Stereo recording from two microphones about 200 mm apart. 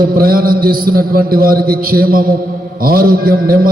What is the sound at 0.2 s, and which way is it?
A man's voice, 45° right (ahead or behind).